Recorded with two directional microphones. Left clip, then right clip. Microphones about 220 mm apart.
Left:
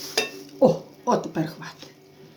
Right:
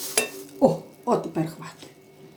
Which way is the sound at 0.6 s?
20° left (ahead or behind).